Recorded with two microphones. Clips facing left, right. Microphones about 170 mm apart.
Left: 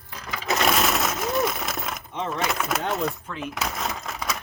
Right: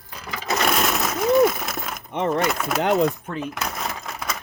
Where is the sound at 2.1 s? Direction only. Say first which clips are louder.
Right 9 dB; 60° right (ahead or behind).